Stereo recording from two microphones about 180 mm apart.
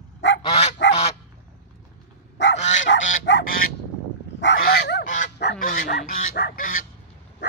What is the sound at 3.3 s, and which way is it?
Honk, 90° left.